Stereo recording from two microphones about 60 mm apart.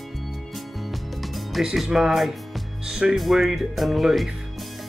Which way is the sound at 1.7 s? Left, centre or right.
Centre.